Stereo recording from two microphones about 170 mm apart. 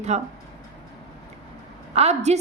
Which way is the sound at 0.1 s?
40° right (ahead or behind).